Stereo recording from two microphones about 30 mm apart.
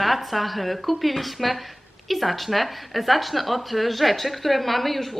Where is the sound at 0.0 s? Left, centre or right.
Centre.